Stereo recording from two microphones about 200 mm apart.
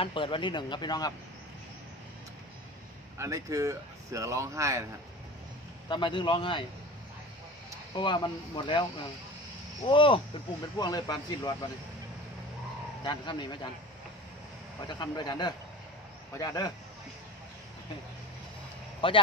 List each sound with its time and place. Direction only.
0.0 s speech: 25° left (ahead or behind)
3.2 s speech: 15° right (ahead or behind)
5.9 s speech: 25° left (ahead or behind)
7.9 s speech: 25° left (ahead or behind)
9.8 s speech: 25° left (ahead or behind)
13.0 s speech: 25° left (ahead or behind)
15.0 s speech: 20° left (ahead or behind)
18.9 s speech: 25° left (ahead or behind)